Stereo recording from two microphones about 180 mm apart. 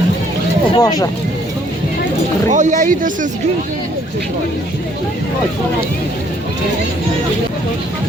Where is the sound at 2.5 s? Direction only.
45° right (ahead or behind).